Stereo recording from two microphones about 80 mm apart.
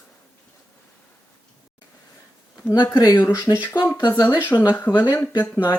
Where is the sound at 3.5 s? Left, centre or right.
Left.